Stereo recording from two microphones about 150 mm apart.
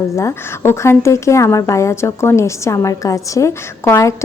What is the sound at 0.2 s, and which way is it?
A woman's voice, 20° left (ahead or behind).